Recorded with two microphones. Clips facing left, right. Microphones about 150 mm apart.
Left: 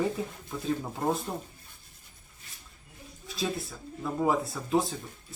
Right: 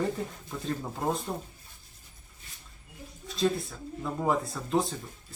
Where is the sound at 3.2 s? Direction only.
5° left (ahead or behind).